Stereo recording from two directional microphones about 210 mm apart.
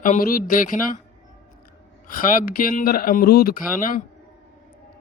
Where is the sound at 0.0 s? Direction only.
40° left (ahead or behind).